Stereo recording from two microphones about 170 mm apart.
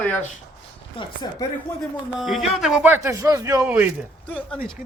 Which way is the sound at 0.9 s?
25° left (ahead or behind).